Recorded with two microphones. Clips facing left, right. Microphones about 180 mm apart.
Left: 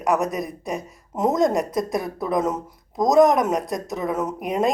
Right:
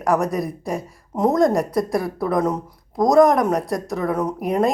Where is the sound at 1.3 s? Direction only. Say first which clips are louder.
Right 2 dB; centre (ahead or behind).